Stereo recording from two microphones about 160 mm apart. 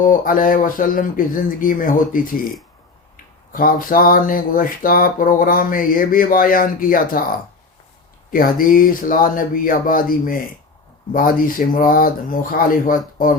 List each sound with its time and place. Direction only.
0.0 s speech: 60° left (ahead or behind)
3.5 s speech: 60° left (ahead or behind)
8.3 s speech: 60° left (ahead or behind)